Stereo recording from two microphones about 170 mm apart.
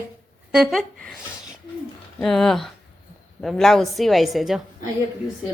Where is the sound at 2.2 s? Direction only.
Centre (ahead or behind).